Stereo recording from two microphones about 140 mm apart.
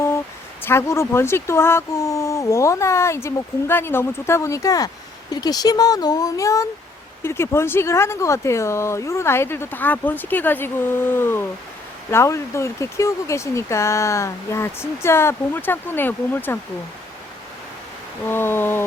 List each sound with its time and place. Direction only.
0.6 s speech: 15° left (ahead or behind)
18.3 s speech: 15° left (ahead or behind)